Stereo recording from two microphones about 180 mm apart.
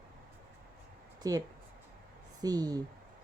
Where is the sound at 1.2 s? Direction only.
20° right (ahead or behind).